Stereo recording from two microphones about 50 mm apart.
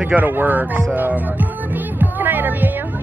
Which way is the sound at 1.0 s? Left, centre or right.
Right.